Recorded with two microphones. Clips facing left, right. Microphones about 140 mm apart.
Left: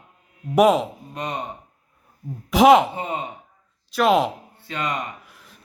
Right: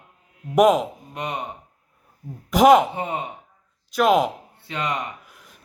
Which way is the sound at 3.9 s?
Centre (ahead or behind).